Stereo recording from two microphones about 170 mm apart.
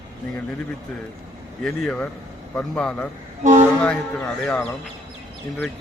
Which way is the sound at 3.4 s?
45° right (ahead or behind).